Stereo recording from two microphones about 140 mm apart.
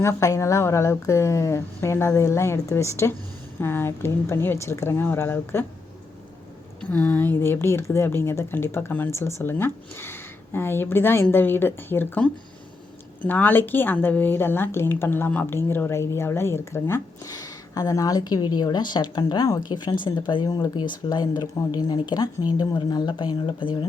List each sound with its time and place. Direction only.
0.0 s a woman's voice: 20° left (ahead or behind)
6.9 s a woman's voice: 15° left (ahead or behind); by 23.8 s 35° left (ahead or behind)